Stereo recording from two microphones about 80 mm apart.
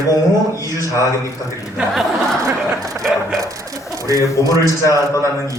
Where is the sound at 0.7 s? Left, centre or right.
Left.